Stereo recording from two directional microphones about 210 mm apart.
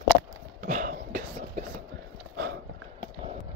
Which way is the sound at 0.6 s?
40° right (ahead or behind).